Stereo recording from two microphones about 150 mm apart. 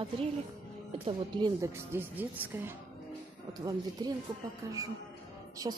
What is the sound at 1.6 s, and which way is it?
Speech, 15° right (ahead or behind).